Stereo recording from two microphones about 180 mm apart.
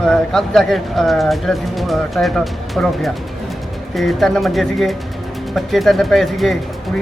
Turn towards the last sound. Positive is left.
turn(degrees=0)  # may be behind; listen again after turning